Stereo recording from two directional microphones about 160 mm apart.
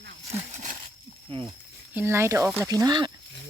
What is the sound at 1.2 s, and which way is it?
Speech, 35° right (ahead or behind).